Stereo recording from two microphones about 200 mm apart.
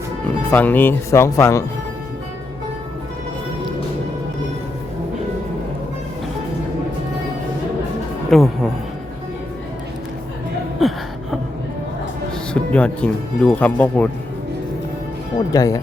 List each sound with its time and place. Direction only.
0.5 s speech: 10° left (ahead or behind)
8.3 s speech: centre (ahead or behind)
10.8 s a sound: centre (ahead or behind)
12.7 s speech: 5° left (ahead or behind)
15.5 s speech: 15° left (ahead or behind)